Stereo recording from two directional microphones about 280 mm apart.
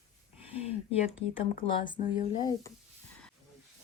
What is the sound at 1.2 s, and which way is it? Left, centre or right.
Speech, centre.